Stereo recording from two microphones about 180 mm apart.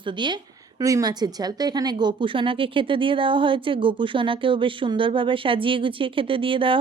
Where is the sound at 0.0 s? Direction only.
25° right (ahead or behind).